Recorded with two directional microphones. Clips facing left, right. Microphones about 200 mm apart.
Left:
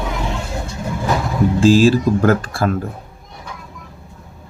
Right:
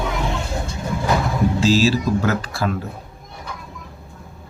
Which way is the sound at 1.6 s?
50° left (ahead or behind).